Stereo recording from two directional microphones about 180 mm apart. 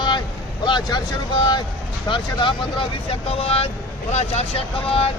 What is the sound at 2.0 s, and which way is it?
Speech, 25° left (ahead or behind).